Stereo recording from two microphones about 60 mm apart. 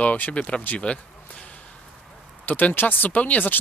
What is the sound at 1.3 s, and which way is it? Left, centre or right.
Whip, left.